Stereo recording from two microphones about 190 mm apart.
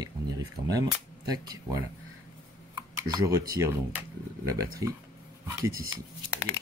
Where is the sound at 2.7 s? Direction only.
15° right (ahead or behind).